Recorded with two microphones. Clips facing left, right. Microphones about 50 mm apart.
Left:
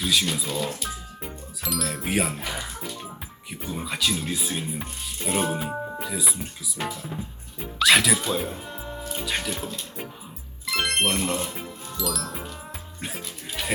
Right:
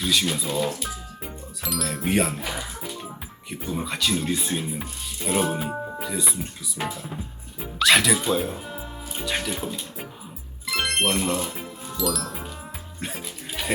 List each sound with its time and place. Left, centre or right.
0.0 s music: centre
5.5 s speech: centre
10.7 s music: centre